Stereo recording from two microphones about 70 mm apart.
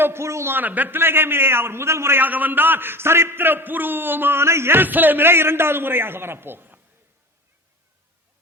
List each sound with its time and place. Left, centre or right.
0.0 s a man's voice: right
0.5 s a man's voice: right